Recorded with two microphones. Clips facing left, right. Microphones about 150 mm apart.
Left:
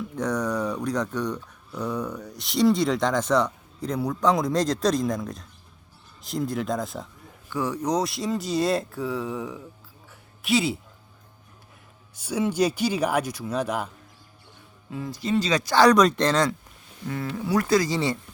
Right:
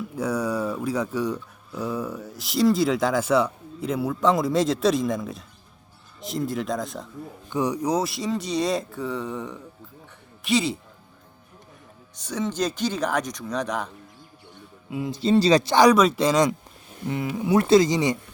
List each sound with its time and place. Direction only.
0.2 s speech: 10° right (ahead or behind)
7.5 s speech: 15° right (ahead or behind); by 10.8 s centre (ahead or behind)
12.1 s speech: 10° left (ahead or behind)
14.8 s speech: 10° right (ahead or behind)
15.1 s speech: 30° right (ahead or behind)
15.7 s speech: 15° right (ahead or behind)